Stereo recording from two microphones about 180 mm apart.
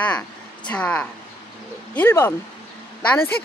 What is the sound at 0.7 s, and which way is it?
Speech, 5° left (ahead or behind).